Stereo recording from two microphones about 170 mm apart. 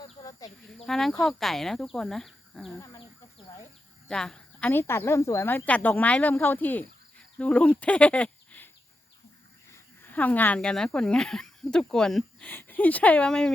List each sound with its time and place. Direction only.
0.2 s a sound: 20° left (ahead or behind)
0.9 s speech: centre (ahead or behind)
2.7 s speech: 20° left (ahead or behind)
4.1 s a woman's voice: 5° left (ahead or behind)
9.7 s speech: 10° left (ahead or behind)